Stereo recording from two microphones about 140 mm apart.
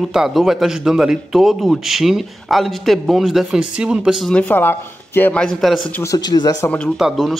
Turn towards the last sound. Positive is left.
turn(degrees=-5)  # may be behind; listen again after turning